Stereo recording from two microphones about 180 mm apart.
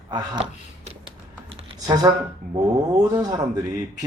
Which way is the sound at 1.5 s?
25° right (ahead or behind).